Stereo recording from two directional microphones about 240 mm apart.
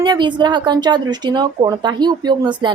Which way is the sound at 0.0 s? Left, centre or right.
Centre.